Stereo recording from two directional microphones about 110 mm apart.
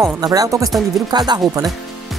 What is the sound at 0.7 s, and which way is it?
Speech, centre (ahead or behind).